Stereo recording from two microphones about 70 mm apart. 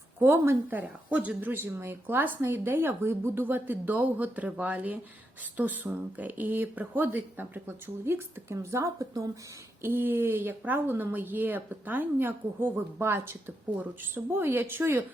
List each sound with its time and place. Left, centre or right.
0.2 s a woman's voice: right
8.5 s a woman's voice: right
9.8 s a woman's voice: right